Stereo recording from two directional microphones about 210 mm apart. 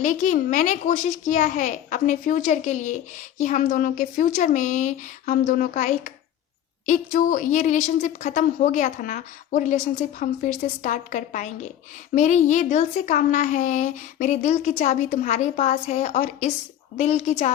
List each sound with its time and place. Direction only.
0.0 s a child's voice: 35° left (ahead or behind)